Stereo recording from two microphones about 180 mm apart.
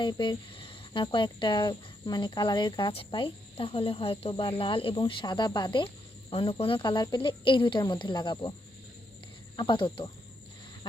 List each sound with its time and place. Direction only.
0.0 s speech: 25° left (ahead or behind)
9.6 s speech: 25° left (ahead or behind)